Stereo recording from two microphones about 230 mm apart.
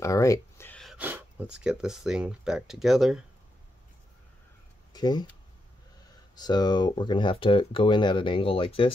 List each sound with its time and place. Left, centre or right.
0.0 s speech: centre
4.9 s a sound: centre
6.3 s speech: centre